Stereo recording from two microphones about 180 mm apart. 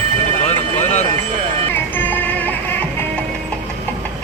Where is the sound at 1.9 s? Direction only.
10° left (ahead or behind).